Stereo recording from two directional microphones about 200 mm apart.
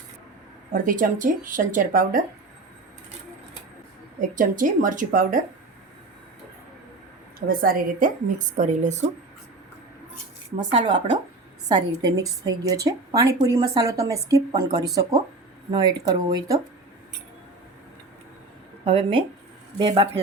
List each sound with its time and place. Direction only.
0.7 s speech: 40° right (ahead or behind)
4.2 s a woman's voice: 40° right (ahead or behind)
7.3 s a woman's voice: 45° right (ahead or behind)
10.7 s a woman's voice: 30° right (ahead or behind)
11.7 s speech: 20° right (ahead or behind)
18.9 s speech: 25° right (ahead or behind)